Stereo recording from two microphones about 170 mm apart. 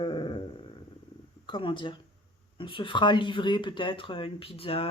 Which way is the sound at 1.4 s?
30° left (ahead or behind).